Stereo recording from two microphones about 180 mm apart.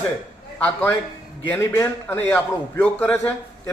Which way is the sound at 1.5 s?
15° left (ahead or behind).